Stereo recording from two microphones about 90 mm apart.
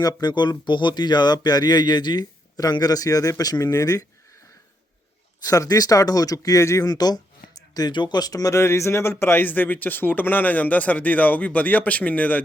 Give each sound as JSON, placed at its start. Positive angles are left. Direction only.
{"t": 0.0, "sound": "speech", "side_deg": 45}
{"t": 5.4, "sound": "speech", "side_deg": 40}